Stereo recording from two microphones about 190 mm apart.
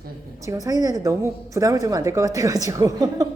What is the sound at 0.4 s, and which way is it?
A woman's voice, 20° right (ahead or behind).